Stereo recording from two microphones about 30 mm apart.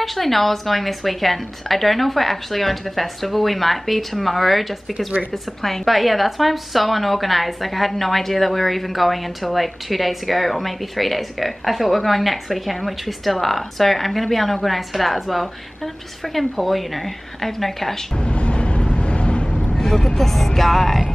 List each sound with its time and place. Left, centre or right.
0.0 s a woman's voice: centre
18.1 s vehicle: left
19.8 s a woman's voice: centre